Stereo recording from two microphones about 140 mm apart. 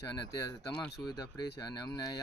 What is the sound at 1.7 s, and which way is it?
Speech, 30° left (ahead or behind).